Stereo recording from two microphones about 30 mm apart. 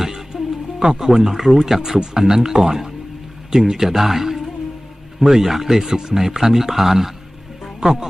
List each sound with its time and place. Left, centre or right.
0.0 s music: centre
0.8 s speech: right